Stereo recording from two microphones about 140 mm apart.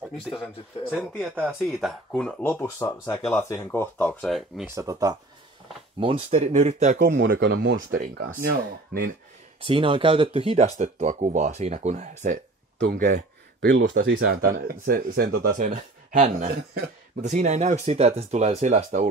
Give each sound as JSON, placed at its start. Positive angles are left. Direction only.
{"t": 0.4, "sound": "a man's voice", "side_deg": 0}
{"t": 2.6, "sound": "speech", "side_deg": 25}
{"t": 4.3, "sound": "a man's voice", "side_deg": 0}
{"t": 4.6, "sound": "speech", "side_deg": -20}
{"t": 5.9, "sound": "speech", "side_deg": -40}
{"t": 7.6, "sound": "speech", "side_deg": -90}
{"t": 9.6, "sound": "speech", "side_deg": -40}
{"t": 12.8, "sound": "speech", "side_deg": -90}